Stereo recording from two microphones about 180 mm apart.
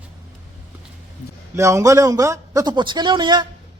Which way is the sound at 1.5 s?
15° right (ahead or behind).